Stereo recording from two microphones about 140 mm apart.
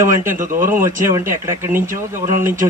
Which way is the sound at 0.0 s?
20° right (ahead or behind).